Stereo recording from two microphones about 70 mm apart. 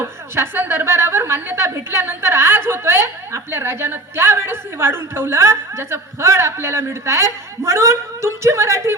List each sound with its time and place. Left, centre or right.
0.3 s a woman's voice: right